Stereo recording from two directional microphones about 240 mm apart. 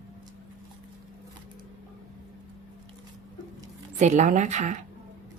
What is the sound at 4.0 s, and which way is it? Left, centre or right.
Speech, right.